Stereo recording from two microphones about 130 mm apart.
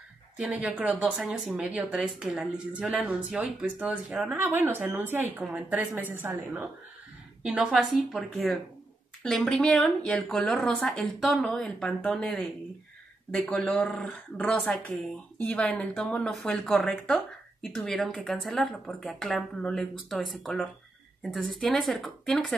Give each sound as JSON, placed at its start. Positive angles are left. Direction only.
{"t": 0.4, "sound": "speech", "side_deg": -10}
{"t": 7.4, "sound": "speech", "side_deg": -5}